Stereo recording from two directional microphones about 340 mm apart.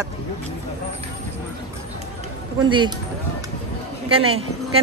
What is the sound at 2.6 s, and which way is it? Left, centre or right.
Speech, centre.